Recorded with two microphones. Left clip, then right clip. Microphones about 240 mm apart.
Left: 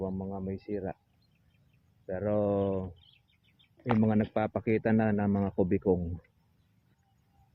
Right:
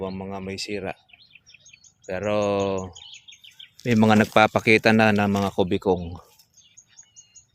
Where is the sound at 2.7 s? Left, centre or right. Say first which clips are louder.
Right 7 dB; right.